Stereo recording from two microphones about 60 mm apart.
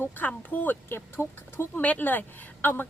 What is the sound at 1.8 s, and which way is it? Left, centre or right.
Speech, left.